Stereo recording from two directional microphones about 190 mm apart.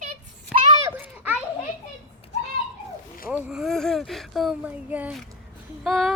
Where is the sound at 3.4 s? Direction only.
Centre (ahead or behind).